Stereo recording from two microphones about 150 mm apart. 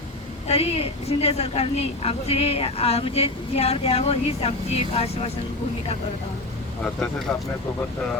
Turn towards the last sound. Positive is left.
turn(degrees=5)  # may be behind; listen again after turning